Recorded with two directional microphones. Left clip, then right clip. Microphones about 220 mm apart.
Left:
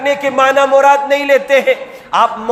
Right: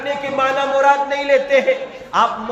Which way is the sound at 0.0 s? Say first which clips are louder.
Left 7 dB; 55° left (ahead or behind).